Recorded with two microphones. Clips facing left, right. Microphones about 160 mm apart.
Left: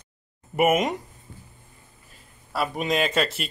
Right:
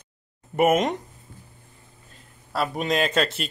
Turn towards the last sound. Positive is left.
turn(degrees=0)  # may be behind; listen again after turning